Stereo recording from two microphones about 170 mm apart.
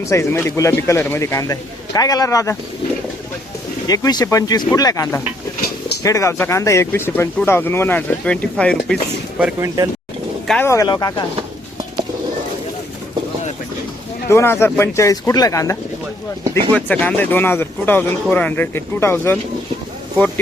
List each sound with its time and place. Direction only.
0.0 s speech: 15° left (ahead or behind)
3.8 s speech: 20° left (ahead or behind); by 8.8 s 5° left (ahead or behind)
9.6 s speech: 20° right (ahead or behind)
10.4 s speech: centre (ahead or behind)
10.7 s speech: 20° left (ahead or behind)
14.3 s speech: 15° left (ahead or behind)
16.7 s speech: 5° left (ahead or behind)